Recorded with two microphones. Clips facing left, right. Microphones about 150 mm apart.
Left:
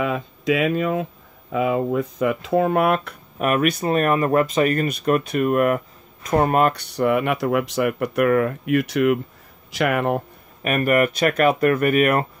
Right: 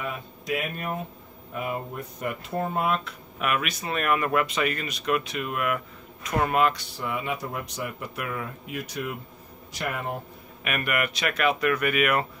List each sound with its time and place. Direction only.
0.0 s speech: 90° left; by 3.2 s 60° left (ahead or behind)
3.3 s speech: 45° left (ahead or behind)
6.7 s speech: 65° left (ahead or behind)
9.7 s speech: 85° left; by 10.2 s 70° left (ahead or behind)
10.6 s speech: 40° left (ahead or behind)